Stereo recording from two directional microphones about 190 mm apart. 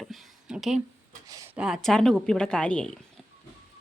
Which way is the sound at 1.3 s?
15° right (ahead or behind).